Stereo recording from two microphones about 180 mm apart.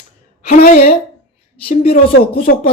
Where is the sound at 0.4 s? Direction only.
55° left (ahead or behind).